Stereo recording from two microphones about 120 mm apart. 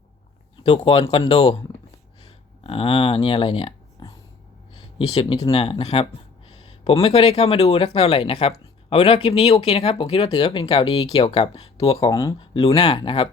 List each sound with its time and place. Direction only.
0.5 s speech: 50° left (ahead or behind)
1.1 s speech: 40° left (ahead or behind)
2.2 s a sound: 50° left (ahead or behind)
4.7 s speech: 50° left (ahead or behind)
12.1 s speech: 35° left (ahead or behind)
12.4 s speech: 45° left (ahead or behind)